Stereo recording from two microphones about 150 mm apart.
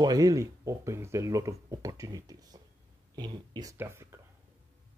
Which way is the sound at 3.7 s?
15° right (ahead or behind).